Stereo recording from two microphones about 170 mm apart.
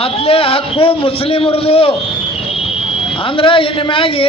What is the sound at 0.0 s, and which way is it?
A man's voice, 35° left (ahead or behind).